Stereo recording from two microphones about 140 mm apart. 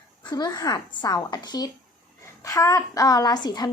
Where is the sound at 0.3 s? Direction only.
30° left (ahead or behind).